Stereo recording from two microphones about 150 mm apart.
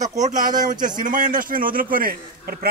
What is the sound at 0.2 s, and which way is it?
A man's voice, 60° right (ahead or behind).